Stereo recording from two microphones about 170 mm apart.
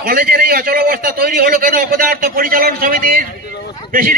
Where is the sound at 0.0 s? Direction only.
60° right (ahead or behind).